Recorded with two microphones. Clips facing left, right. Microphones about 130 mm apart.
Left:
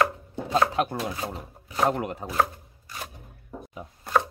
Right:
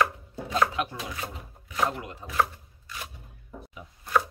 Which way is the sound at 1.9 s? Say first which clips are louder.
Left 8 dB; 55° left (ahead or behind).